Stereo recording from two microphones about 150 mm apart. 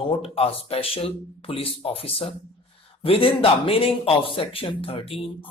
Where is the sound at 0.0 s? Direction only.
35° left (ahead or behind).